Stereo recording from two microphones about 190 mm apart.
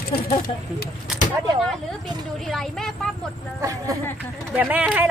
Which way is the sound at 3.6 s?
15° right (ahead or behind).